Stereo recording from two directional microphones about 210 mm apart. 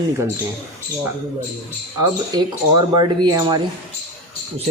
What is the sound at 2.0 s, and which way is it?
Speech, 20° right (ahead or behind).